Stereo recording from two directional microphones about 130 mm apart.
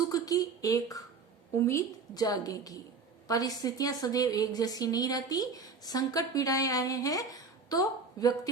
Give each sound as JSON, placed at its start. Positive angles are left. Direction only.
{"t": 0.1, "sound": "a woman's voice", "side_deg": 30}